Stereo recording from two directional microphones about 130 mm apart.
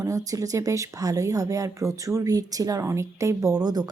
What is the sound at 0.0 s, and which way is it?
A woman's voice, 25° right (ahead or behind).